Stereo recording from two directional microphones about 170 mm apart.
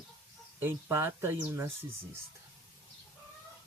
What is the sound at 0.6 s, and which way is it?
Speech, 15° right (ahead or behind).